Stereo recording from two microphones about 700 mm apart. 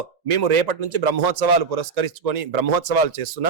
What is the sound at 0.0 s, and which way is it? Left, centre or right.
A man's voice, right.